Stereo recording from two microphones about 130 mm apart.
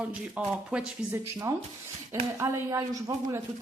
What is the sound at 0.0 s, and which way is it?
A woman's voice, 10° right (ahead or behind).